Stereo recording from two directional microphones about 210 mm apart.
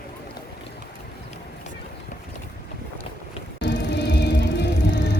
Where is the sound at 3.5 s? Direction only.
55° left (ahead or behind).